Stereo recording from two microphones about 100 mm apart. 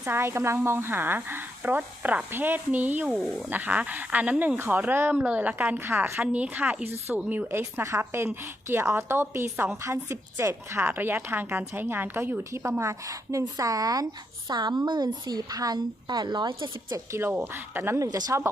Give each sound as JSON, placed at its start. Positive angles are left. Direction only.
{"t": 0.0, "sound": "a woman's voice", "side_deg": -25}
{"t": 6.2, "sound": "a woman's voice", "side_deg": -15}
{"t": 7.6, "sound": "a woman's voice", "side_deg": -30}
{"t": 16.9, "sound": "a woman's voice", "side_deg": -25}